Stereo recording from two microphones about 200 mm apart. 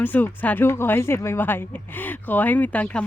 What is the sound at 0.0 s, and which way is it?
Speech, 10° left (ahead or behind).